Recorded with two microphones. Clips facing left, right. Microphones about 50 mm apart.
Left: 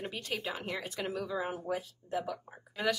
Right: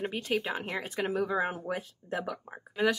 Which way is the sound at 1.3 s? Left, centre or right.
Right.